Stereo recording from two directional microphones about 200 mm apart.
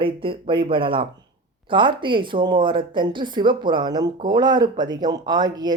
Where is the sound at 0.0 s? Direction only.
25° right (ahead or behind).